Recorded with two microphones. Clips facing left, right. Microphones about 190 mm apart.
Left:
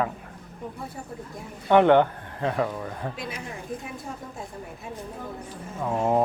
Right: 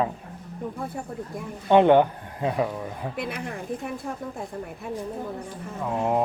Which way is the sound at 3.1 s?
60° right (ahead or behind).